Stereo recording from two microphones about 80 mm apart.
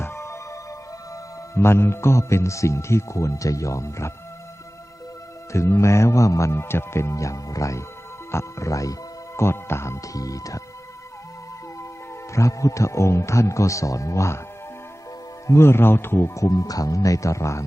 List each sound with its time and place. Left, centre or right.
0.0 s music: left
1.1 s a man's voice: left
5.5 s a man's voice: left
12.3 s a man's voice: left
15.4 s a man's voice: left